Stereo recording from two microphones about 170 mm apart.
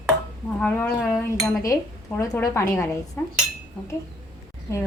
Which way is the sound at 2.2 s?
15° left (ahead or behind).